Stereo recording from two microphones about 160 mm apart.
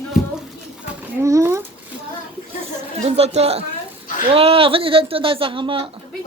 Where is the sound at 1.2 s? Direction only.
15° right (ahead or behind).